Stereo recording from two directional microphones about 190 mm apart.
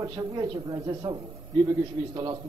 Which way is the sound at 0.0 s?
20° right (ahead or behind).